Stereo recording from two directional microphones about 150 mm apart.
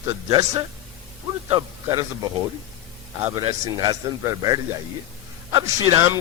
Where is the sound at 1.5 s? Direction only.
35° right (ahead or behind).